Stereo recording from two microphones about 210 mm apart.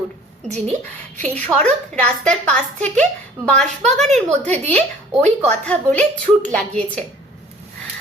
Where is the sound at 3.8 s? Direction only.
35° right (ahead or behind).